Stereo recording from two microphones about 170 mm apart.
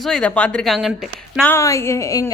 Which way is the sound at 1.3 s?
10° left (ahead or behind).